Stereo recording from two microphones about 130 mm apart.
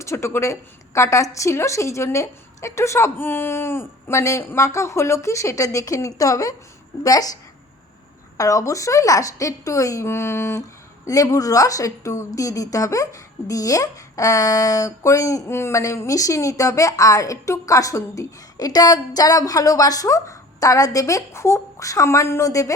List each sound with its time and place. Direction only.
0.0 s a woman's voice: 20° left (ahead or behind)
8.4 s a woman's voice: 25° left (ahead or behind)